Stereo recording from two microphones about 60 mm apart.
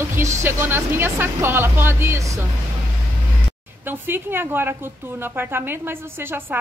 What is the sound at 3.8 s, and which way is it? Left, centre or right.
A woman's voice, right.